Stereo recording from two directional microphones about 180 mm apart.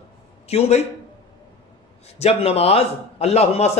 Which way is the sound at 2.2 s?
35° left (ahead or behind).